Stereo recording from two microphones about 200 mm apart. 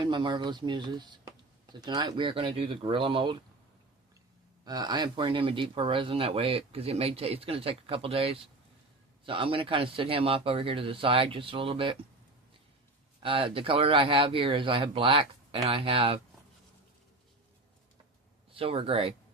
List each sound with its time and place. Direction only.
0.0 s speech: 25° right (ahead or behind)
4.6 s speech: 20° right (ahead or behind)
13.1 s speech: 25° right (ahead or behind)
18.5 s speech: 30° right (ahead or behind)